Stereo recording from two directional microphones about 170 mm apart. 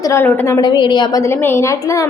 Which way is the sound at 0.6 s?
25° left (ahead or behind).